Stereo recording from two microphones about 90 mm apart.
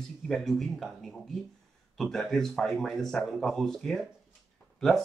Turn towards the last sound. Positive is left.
turn(degrees=5)  # may be behind; listen again after turning